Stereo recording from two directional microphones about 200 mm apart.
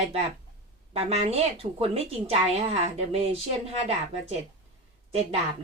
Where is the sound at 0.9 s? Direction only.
30° right (ahead or behind).